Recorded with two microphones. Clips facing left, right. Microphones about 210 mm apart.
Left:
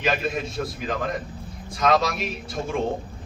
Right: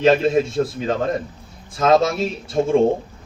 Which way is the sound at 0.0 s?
25° right (ahead or behind).